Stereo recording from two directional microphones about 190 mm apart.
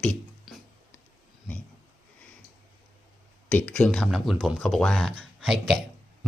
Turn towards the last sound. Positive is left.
turn(degrees=0)  # may be behind; listen again after turning